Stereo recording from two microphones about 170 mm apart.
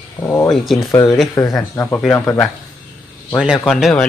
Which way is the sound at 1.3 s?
20° left (ahead or behind).